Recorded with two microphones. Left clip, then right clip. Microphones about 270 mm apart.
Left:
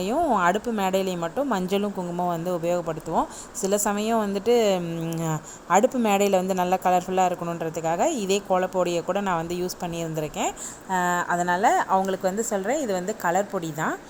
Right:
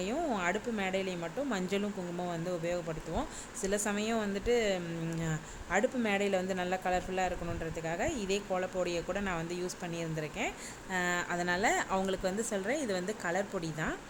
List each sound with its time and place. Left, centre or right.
0.0 s a woman's voice: centre